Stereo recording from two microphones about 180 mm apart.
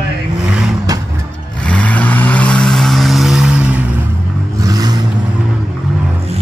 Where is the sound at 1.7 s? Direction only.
10° left (ahead or behind).